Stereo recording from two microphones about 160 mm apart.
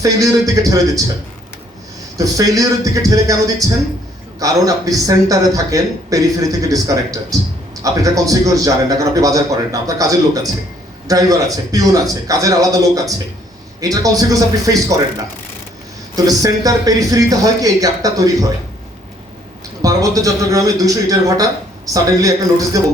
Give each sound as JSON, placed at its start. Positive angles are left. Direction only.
{"t": 0.0, "sound": "a man's voice", "side_deg": -20}
{"t": 2.1, "sound": "a man's voice", "side_deg": -20}
{"t": 16.1, "sound": "a man's voice", "side_deg": -20}
{"t": 19.8, "sound": "a man's voice", "side_deg": -20}